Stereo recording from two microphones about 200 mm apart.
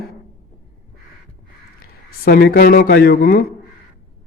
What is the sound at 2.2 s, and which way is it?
Speech, 50° left (ahead or behind).